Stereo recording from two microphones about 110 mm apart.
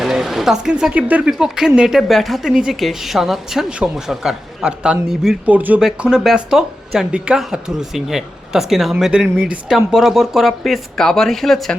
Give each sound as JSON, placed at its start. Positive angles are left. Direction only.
{"t": 0.0, "sound": "speech", "side_deg": -5}